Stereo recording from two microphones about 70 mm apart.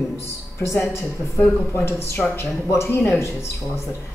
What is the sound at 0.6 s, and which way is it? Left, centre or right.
A woman's voice, left.